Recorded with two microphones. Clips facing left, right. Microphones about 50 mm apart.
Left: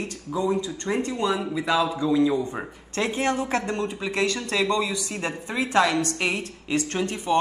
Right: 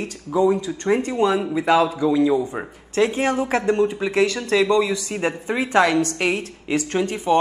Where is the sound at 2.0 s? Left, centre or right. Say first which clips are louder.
Right 3 dB; centre.